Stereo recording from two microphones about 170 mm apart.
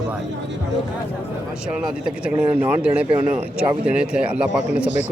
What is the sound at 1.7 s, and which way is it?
A man's voice, 5° right (ahead or behind).